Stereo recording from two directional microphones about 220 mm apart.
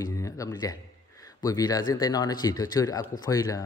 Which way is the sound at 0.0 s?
15° left (ahead or behind).